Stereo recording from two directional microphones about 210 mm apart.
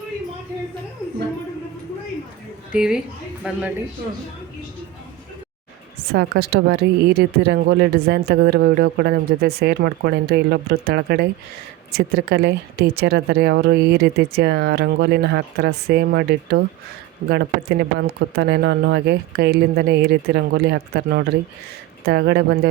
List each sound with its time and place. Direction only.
2.7 s a woman's voice: 5° right (ahead or behind)
6.1 s a woman's voice: 50° right (ahead or behind)